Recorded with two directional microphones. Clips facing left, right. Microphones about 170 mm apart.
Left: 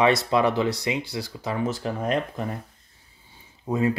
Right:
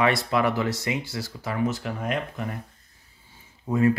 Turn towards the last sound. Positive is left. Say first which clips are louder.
# right 2 dB
turn(degrees=20)  # may be behind; listen again after turning